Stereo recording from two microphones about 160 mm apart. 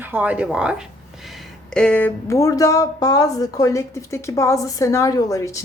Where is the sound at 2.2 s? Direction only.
20° left (ahead or behind).